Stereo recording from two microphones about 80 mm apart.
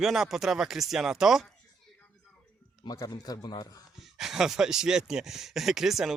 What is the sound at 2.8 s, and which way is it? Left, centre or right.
A man's voice, left.